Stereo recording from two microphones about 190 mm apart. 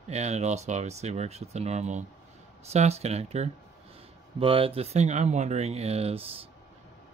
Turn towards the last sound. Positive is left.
turn(degrees=-30)  # may be behind; listen again after turning